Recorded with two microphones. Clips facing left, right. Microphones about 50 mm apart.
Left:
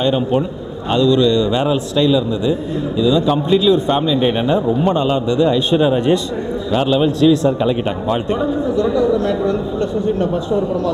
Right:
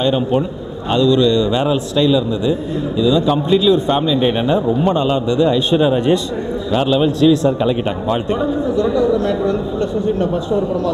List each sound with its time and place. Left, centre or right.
0.0 s a man's voice: centre